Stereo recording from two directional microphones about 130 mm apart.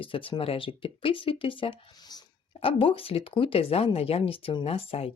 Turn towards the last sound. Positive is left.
turn(degrees=50)  # may be behind; listen again after turning